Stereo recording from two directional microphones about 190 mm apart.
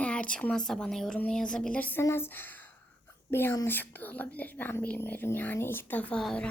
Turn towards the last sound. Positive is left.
turn(degrees=5)  # may be behind; listen again after turning